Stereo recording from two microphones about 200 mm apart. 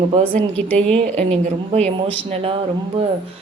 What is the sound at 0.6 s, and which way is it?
Speech, 5° left (ahead or behind).